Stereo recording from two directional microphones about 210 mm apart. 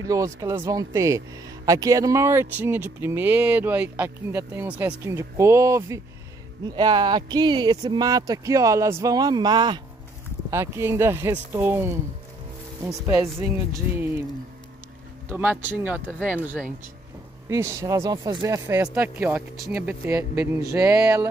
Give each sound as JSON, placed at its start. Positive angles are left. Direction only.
{"t": 0.0, "sound": "speech", "side_deg": -15}
{"t": 15.2, "sound": "speech", "side_deg": -10}
{"t": 17.5, "sound": "speech", "side_deg": -15}